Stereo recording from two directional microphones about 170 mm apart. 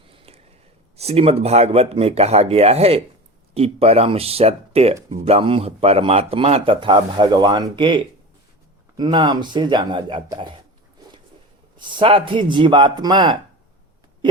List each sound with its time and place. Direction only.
0.1 s a sound: 35° right (ahead or behind)
0.9 s speech: 40° right (ahead or behind)
11.8 s speech: 30° right (ahead or behind)